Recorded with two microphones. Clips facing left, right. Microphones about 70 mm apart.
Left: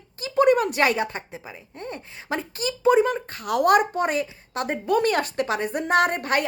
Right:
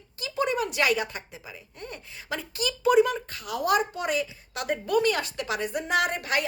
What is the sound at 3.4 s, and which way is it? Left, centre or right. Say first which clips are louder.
Speech: left 7 dB; left.